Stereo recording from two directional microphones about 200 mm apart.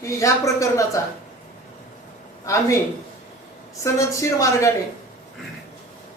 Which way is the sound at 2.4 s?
15° left (ahead or behind).